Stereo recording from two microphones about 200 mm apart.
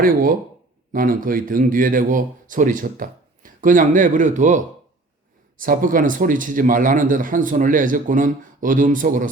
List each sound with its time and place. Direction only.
0.0 s a man's voice: 45° right (ahead or behind)